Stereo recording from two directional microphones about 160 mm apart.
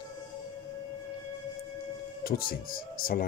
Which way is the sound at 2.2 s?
65° left (ahead or behind).